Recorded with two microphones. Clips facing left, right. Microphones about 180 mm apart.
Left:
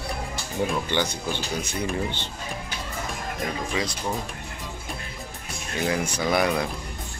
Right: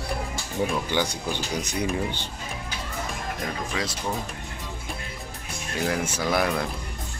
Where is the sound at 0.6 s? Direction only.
10° right (ahead or behind).